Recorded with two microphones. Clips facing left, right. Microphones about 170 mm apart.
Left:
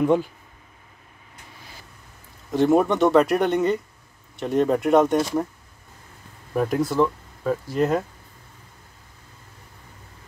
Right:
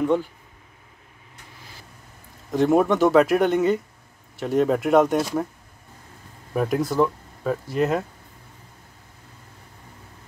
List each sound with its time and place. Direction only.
0.0 s speech: 15° left (ahead or behind)
2.5 s speech: centre (ahead or behind)
6.5 s speech: centre (ahead or behind)